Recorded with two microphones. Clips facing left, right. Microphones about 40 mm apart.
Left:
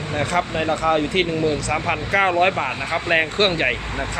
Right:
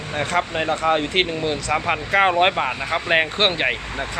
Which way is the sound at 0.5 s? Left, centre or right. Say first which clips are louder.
Even; centre.